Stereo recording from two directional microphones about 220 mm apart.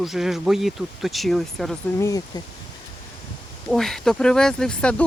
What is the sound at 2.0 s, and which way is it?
Speech, 15° left (ahead or behind).